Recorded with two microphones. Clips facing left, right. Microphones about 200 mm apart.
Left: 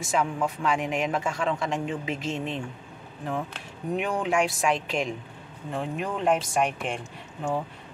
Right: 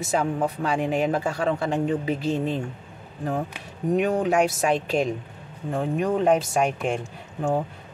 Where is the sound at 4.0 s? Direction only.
40° right (ahead or behind).